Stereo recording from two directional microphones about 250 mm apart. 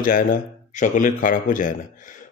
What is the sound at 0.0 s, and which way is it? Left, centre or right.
A man's voice, left.